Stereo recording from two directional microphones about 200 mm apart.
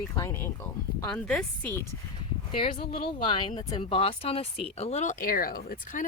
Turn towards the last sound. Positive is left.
turn(degrees=40)  # may be behind; listen again after turning